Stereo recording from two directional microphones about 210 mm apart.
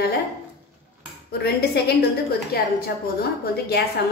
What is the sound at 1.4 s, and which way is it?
Speech, 50° left (ahead or behind).